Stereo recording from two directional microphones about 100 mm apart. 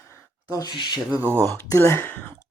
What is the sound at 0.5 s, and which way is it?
Speech, 45° left (ahead or behind).